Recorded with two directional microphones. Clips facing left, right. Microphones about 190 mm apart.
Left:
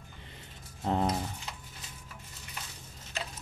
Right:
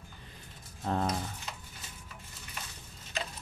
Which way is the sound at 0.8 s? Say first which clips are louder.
Left 2 dB; 20° left (ahead or behind).